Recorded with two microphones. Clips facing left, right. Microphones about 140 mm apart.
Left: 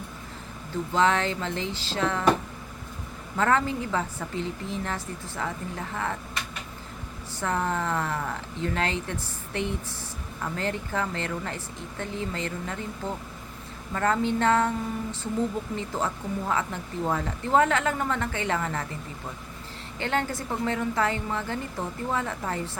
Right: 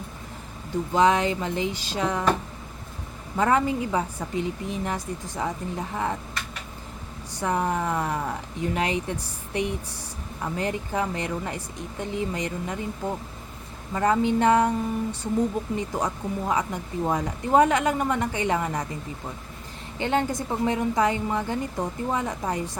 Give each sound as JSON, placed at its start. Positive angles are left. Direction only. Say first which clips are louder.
{"t": 0.9, "sound": "a woman's voice", "louder": "right 3 dB", "side_deg": -15}
{"t": 3.3, "sound": "a woman's voice", "louder": "right 2 dB", "side_deg": -15}
{"t": 7.3, "sound": "a woman's voice", "louder": "right 2 dB", "side_deg": -15}
{"t": 15.7, "sound": "a woman's voice", "louder": "right 2 dB", "side_deg": -15}
{"t": 20.0, "sound": "a woman's voice", "louder": "right 4 dB", "side_deg": -15}